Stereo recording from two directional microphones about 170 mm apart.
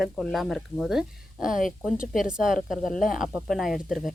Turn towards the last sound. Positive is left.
turn(degrees=0)  # may be behind; listen again after turning